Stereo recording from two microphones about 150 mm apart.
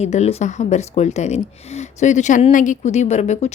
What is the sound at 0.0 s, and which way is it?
A woman's voice, 45° left (ahead or behind).